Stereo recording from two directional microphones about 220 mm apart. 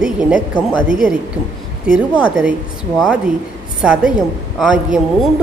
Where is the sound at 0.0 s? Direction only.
5° right (ahead or behind).